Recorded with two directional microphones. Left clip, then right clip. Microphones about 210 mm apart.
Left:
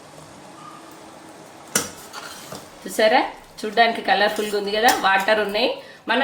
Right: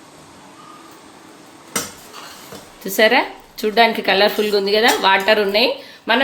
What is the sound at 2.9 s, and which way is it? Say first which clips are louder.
A woman's voice: right 3 dB; 45° right (ahead or behind).